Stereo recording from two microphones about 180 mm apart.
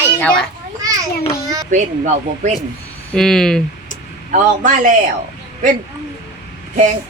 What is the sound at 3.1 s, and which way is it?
Speech, 5° left (ahead or behind).